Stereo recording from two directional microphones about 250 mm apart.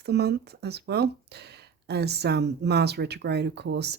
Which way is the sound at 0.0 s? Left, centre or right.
Right.